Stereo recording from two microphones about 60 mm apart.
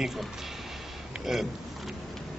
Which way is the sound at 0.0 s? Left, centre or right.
Centre.